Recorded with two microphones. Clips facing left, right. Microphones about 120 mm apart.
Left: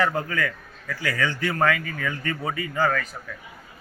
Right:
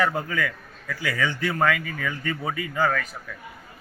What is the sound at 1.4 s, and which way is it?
A man's voice, centre (ahead or behind).